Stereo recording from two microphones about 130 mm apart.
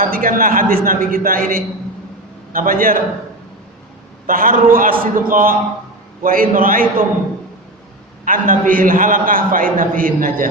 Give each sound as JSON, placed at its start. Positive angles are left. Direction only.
{"t": 0.0, "sound": "a man's voice", "side_deg": -90}
{"t": 4.3, "sound": "a man's voice", "side_deg": -90}
{"t": 8.2, "sound": "a man's voice", "side_deg": -90}